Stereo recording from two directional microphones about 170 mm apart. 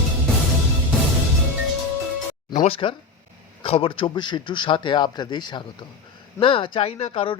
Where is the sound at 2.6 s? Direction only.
30° left (ahead or behind).